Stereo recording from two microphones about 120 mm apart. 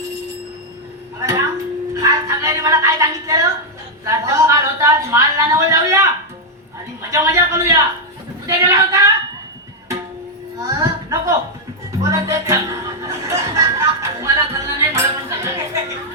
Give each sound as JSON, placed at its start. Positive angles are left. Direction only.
{"t": 1.2, "sound": "a sound", "side_deg": -25}
{"t": 2.0, "sound": "music", "side_deg": -30}
{"t": 4.0, "sound": "a woman's voice", "side_deg": -25}
{"t": 7.1, "sound": "a woman's voice", "side_deg": -25}
{"t": 10.6, "sound": "a woman's voice", "side_deg": -30}
{"t": 11.9, "sound": "chuckle", "side_deg": -25}
{"t": 15.4, "sound": "a woman's voice", "side_deg": -25}